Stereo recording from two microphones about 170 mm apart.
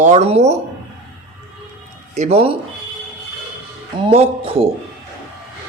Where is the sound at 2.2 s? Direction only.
35° right (ahead or behind).